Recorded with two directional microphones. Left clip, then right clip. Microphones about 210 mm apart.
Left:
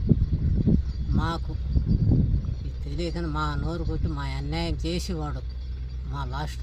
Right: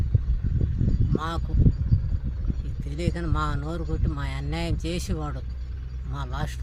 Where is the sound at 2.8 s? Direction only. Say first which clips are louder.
Even; centre (ahead or behind).